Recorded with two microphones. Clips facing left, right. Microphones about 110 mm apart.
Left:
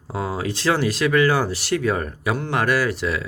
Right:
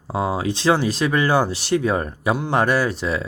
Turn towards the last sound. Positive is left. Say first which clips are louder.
# right 1 dB
turn(degrees=-25)  # may be behind; listen again after turning